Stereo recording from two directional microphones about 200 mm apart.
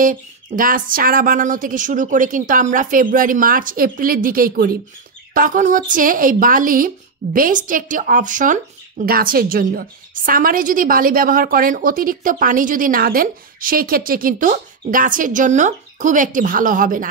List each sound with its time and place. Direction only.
0.0 s a woman's voice: 45° right (ahead or behind)